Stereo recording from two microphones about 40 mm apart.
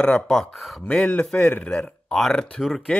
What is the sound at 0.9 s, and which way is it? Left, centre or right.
Speech, left.